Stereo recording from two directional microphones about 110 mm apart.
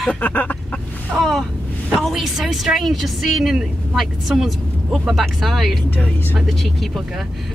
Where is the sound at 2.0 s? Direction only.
Centre (ahead or behind).